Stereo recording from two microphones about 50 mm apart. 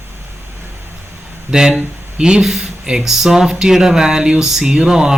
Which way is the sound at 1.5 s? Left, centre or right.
Centre.